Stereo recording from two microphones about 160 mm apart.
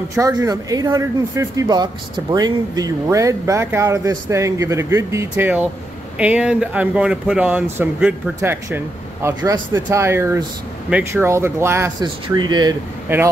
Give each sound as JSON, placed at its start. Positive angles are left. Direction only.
{"t": 0.1, "sound": "speech", "side_deg": -20}
{"t": 12.0, "sound": "speech", "side_deg": -25}
{"t": 13.1, "sound": "speech", "side_deg": -10}